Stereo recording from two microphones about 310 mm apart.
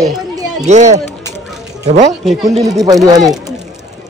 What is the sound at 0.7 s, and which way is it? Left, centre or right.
Speech, right.